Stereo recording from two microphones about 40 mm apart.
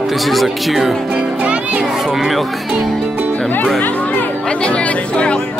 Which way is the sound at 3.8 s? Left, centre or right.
Left.